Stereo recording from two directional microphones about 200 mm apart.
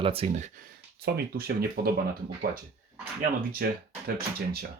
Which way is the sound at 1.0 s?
50° right (ahead or behind).